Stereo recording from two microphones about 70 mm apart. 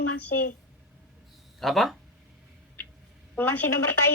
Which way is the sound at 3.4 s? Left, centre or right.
Left.